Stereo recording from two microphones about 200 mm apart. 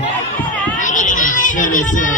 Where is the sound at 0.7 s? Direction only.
40° left (ahead or behind).